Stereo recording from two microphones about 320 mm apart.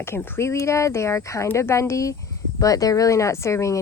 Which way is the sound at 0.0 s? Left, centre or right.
Centre.